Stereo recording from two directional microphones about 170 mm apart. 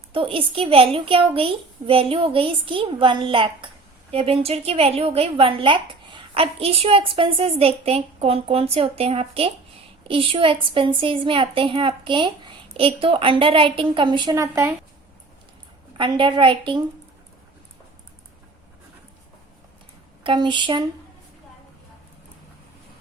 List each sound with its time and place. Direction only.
0.1 s a woman's voice: 30° right (ahead or behind); by 14.7 s 15° right (ahead or behind)
16.0 s a woman's voice: 30° right (ahead or behind)
20.2 s a woman's voice: 30° right (ahead or behind)